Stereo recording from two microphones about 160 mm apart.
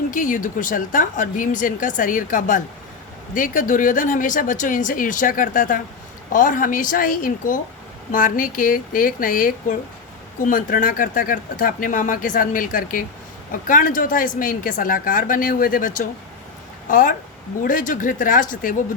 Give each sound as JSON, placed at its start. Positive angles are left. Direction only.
{"t": 0.1, "sound": "a woman's voice", "side_deg": 55}